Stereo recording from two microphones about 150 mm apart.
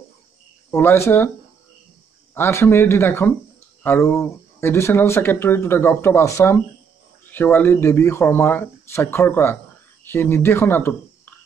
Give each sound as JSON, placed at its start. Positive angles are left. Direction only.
{"t": 0.7, "sound": "speech", "side_deg": 15}
{"t": 2.3, "sound": "speech", "side_deg": 15}